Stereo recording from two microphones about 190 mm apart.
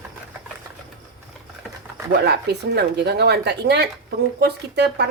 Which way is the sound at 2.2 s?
60° right (ahead or behind).